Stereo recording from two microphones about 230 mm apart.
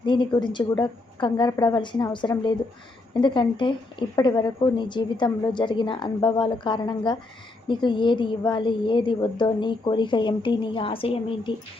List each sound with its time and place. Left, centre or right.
0.0 s a woman's voice: left